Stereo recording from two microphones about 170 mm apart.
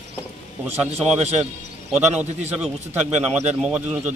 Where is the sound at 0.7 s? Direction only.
40° right (ahead or behind).